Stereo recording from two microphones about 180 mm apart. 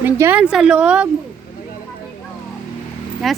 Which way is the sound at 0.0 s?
10° right (ahead or behind).